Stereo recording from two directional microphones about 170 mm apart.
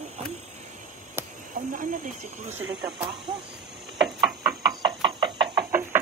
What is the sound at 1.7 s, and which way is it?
Speech, 50° right (ahead or behind).